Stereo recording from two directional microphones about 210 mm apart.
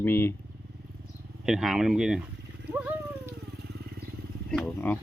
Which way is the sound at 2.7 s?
10° right (ahead or behind).